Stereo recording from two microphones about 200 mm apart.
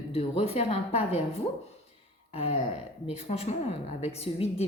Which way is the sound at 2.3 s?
30° left (ahead or behind).